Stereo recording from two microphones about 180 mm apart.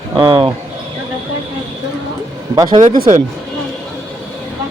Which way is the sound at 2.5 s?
20° right (ahead or behind).